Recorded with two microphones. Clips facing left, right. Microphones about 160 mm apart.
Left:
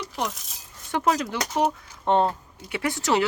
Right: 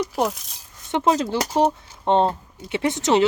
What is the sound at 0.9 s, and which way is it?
Speech, 25° right (ahead or behind).